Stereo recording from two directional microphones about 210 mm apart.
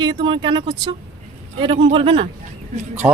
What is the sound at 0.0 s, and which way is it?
Speech, 25° right (ahead or behind).